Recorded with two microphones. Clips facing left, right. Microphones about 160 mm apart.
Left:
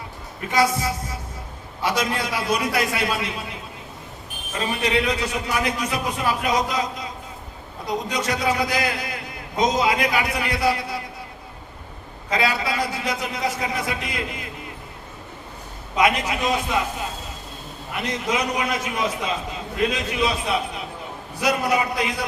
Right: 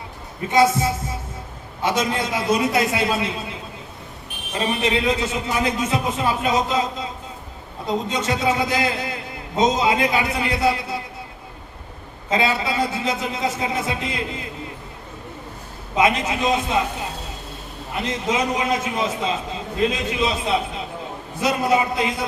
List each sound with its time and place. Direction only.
0.4 s a man's voice: 25° right (ahead or behind)
4.5 s a man's voice: 25° right (ahead or behind)
12.3 s a man's voice: 25° right (ahead or behind)
16.0 s a man's voice: 25° right (ahead or behind)
17.9 s a man's voice: 25° right (ahead or behind)